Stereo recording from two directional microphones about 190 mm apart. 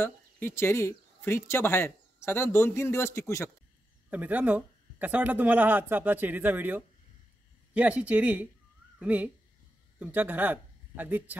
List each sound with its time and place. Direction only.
0.0 s speech: 10° left (ahead or behind)
4.1 s a man's voice: 10° right (ahead or behind)